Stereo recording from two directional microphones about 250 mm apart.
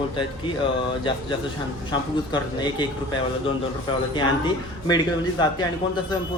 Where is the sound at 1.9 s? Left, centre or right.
Centre.